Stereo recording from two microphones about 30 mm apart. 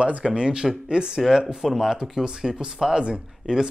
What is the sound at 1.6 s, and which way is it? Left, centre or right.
Speech, centre.